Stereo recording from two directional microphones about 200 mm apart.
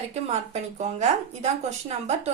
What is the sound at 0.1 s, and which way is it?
A woman's voice, 35° right (ahead or behind).